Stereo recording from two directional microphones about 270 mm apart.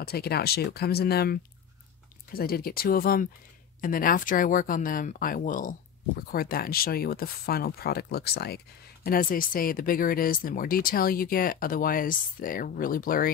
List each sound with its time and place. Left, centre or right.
0.0 s speech: left